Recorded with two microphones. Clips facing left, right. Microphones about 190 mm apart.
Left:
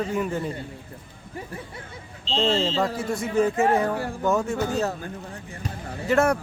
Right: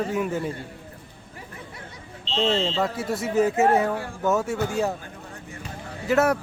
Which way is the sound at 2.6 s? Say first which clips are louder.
Left 1 dB; 5° left (ahead or behind).